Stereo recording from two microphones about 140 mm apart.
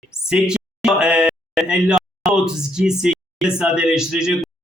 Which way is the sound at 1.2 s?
Centre (ahead or behind).